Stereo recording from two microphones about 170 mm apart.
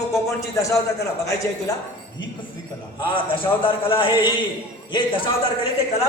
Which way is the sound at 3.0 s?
30° left (ahead or behind).